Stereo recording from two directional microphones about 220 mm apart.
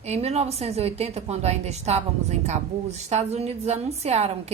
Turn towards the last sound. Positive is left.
turn(degrees=-30)  # may be behind; listen again after turning